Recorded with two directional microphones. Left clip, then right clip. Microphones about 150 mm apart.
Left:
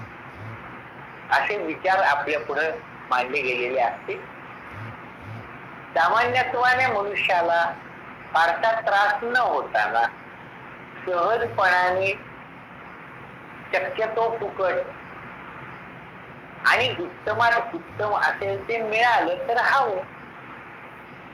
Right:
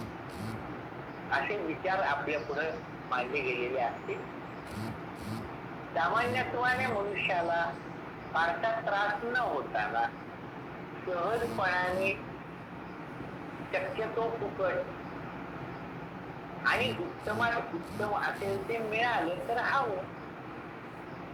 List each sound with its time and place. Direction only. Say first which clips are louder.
1.3 s speech: left 10 dB; 35° left (ahead or behind)
5.9 s speech: left 10 dB; 35° left (ahead or behind)
11.1 s speech: left 10 dB; 35° left (ahead or behind)
13.7 s speech: left 10 dB; 35° left (ahead or behind)
16.6 s speech: left 9 dB; 35° left (ahead or behind)